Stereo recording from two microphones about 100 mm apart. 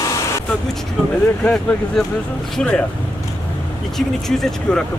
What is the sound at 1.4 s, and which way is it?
Speech, 15° left (ahead or behind).